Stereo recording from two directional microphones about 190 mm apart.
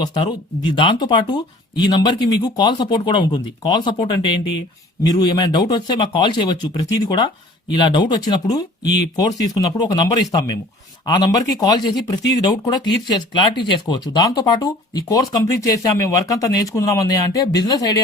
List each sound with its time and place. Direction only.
0.7 s speech: 25° left (ahead or behind)